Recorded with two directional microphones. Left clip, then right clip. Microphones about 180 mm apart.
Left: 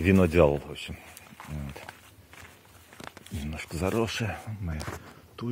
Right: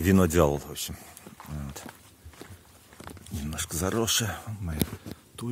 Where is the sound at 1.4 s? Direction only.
60° left (ahead or behind).